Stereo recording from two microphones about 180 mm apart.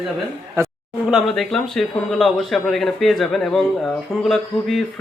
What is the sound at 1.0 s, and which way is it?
Speech, centre (ahead or behind).